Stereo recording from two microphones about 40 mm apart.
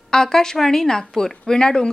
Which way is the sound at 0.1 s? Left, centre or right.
Centre.